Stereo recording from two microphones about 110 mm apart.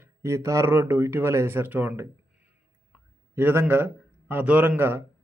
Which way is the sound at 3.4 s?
20° right (ahead or behind).